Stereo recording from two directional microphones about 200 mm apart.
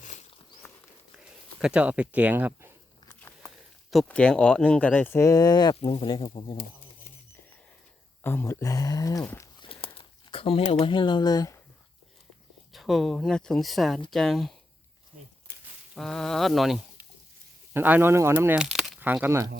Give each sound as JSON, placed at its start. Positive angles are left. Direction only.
{"t": 1.5, "sound": "speech", "side_deg": -5}
{"t": 3.1, "sound": "a sound", "side_deg": 10}
{"t": 3.9, "sound": "speech", "side_deg": 5}
{"t": 8.2, "sound": "speech", "side_deg": 10}
{"t": 9.6, "sound": "a sound", "side_deg": 25}
{"t": 12.7, "sound": "speech", "side_deg": 0}
{"t": 16.0, "sound": "speech", "side_deg": 0}